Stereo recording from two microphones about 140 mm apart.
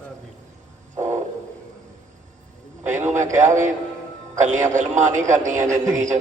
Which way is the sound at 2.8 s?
60° right (ahead or behind).